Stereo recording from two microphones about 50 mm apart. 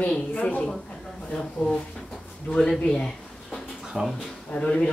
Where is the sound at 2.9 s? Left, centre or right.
Centre.